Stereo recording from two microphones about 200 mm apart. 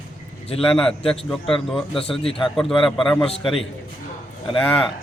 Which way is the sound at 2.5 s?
Centre (ahead or behind).